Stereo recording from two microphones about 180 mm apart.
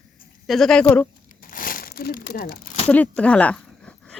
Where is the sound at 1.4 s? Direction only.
50° left (ahead or behind).